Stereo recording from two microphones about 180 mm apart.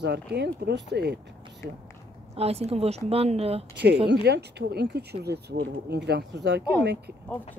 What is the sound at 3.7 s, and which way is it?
Speech, 75° right (ahead or behind).